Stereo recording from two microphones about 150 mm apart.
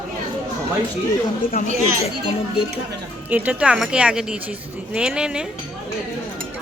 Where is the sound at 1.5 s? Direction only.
65° left (ahead or behind).